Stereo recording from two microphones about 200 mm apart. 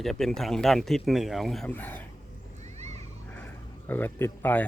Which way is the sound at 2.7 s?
35° right (ahead or behind).